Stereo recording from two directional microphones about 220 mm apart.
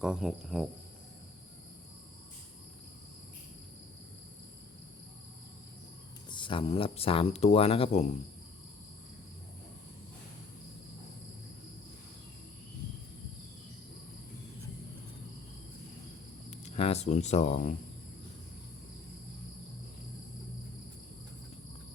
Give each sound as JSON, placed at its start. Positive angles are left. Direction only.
{"t": 0.0, "sound": "speech", "side_deg": 0}
{"t": 6.3, "sound": "speech", "side_deg": 20}
{"t": 16.5, "sound": "speech", "side_deg": 30}